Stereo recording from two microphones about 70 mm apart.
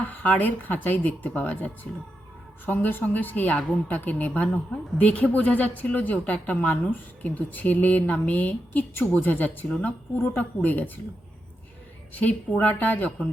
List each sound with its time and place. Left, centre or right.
0.0 s a woman's voice: left
12.2 s a woman's voice: left